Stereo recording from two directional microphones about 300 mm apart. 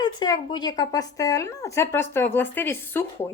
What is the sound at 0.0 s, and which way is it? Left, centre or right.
A woman's voice, centre.